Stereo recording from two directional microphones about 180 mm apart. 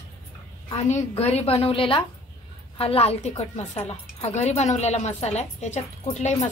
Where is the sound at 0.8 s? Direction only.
35° left (ahead or behind).